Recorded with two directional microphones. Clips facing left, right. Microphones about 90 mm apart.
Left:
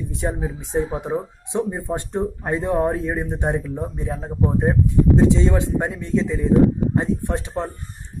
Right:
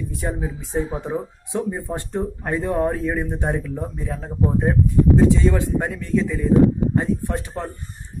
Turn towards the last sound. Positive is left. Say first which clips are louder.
# left 2 dB
turn(degrees=20)  # may be behind; listen again after turning